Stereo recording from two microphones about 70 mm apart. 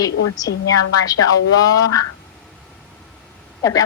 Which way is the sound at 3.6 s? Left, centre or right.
Left.